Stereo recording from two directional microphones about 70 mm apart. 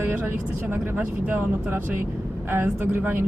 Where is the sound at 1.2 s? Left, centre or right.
Right.